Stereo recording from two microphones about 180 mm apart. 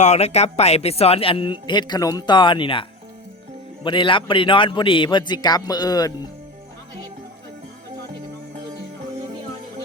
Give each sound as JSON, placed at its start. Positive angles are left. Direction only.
{"t": 0.0, "sound": "speech", "side_deg": 35}
{"t": 3.8, "sound": "speech", "side_deg": 25}